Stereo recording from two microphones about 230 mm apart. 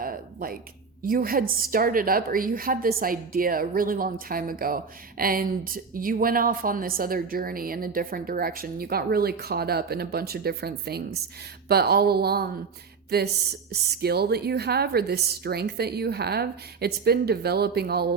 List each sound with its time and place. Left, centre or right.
0.0 s a sound: right
1.0 s a woman's voice: right
13.7 s a woman's voice: right